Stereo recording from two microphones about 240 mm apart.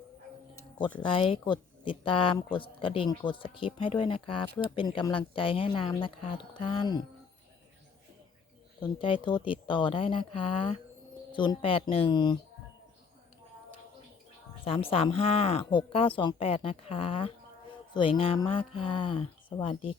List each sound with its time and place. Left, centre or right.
0.9 s speech: left
9.0 s speech: left
14.6 s speech: left